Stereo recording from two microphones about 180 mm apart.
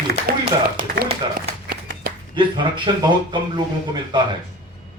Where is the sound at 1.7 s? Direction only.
60° right (ahead or behind).